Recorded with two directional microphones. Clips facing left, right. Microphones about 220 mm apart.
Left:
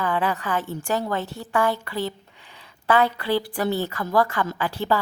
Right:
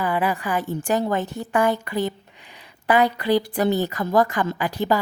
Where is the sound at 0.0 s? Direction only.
10° right (ahead or behind).